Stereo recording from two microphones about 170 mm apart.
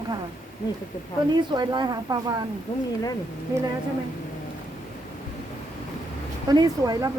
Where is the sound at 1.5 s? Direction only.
25° right (ahead or behind).